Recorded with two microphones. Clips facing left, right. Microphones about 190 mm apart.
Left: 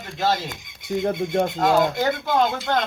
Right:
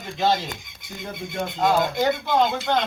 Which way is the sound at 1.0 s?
50° left (ahead or behind).